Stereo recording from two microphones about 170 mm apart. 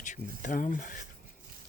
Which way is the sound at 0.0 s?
50° left (ahead or behind).